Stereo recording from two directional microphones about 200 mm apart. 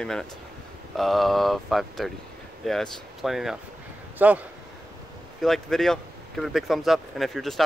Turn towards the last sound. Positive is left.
turn(degrees=0)  # may be behind; listen again after turning